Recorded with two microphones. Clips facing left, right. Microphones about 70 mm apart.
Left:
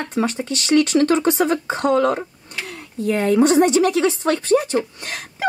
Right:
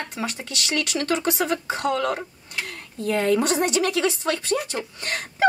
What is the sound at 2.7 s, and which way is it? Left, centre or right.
Speech, centre.